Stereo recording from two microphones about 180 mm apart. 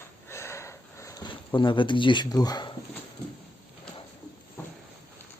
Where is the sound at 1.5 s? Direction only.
25° left (ahead or behind).